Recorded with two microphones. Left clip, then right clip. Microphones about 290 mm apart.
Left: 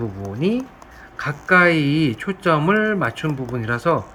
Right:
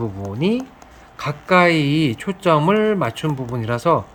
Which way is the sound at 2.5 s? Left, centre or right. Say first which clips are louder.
Right 2 dB; right.